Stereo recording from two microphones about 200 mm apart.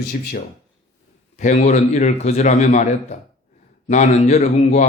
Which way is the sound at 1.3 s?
35° left (ahead or behind).